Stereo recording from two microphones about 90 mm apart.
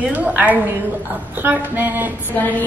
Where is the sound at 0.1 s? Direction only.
15° right (ahead or behind).